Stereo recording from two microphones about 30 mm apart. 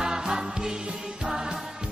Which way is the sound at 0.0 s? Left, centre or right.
Right.